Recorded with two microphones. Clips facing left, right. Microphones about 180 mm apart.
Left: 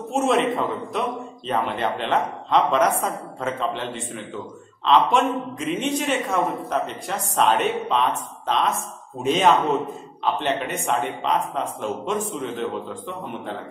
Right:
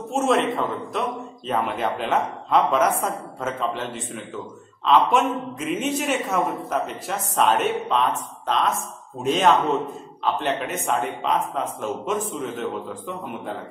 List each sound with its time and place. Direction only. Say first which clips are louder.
0.1 s speech: even; centre (ahead or behind)